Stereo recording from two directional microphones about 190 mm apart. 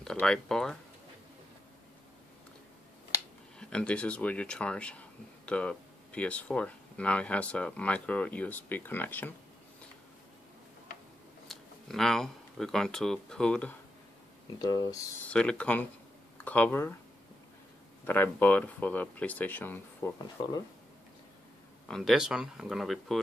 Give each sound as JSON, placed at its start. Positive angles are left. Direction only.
{"t": 0.0, "sound": "speech", "side_deg": 5}
{"t": 3.5, "sound": "speech", "side_deg": 5}
{"t": 11.4, "sound": "speech", "side_deg": 0}
{"t": 14.6, "sound": "speech", "side_deg": 20}
{"t": 15.2, "sound": "speech", "side_deg": 5}
{"t": 18.0, "sound": "speech", "side_deg": 10}
{"t": 21.8, "sound": "speech", "side_deg": 0}